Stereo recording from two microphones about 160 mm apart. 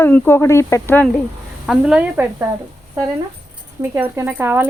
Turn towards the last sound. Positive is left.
turn(degrees=-15)  # may be behind; listen again after turning